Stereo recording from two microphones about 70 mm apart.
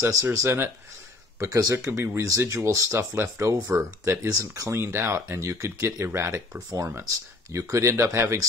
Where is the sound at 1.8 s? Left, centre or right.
Right.